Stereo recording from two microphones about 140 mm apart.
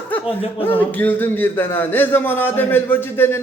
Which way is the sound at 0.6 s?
15° left (ahead or behind).